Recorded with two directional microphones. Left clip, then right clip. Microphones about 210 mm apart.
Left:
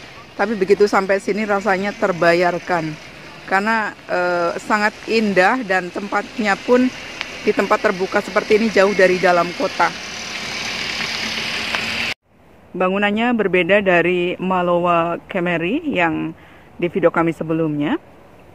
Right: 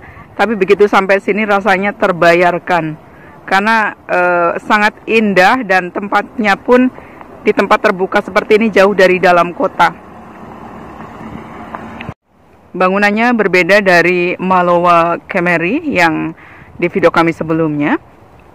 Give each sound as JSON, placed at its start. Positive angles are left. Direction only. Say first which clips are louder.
{"t": 0.4, "sound": "speech", "louder": "right 5 dB", "side_deg": -5}
{"t": 10.8, "sound": "vehicle", "louder": "left 8 dB", "side_deg": 20}
{"t": 11.5, "sound": "a sound", "louder": "left 6 dB", "side_deg": 35}
{"t": 12.7, "sound": "speech", "louder": "right 7 dB", "side_deg": -5}